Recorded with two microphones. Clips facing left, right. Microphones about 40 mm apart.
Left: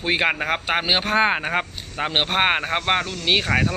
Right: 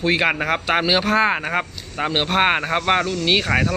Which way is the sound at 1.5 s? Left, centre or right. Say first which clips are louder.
Right 1 dB; centre.